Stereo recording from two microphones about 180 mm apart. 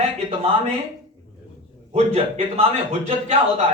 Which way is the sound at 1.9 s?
35° right (ahead or behind).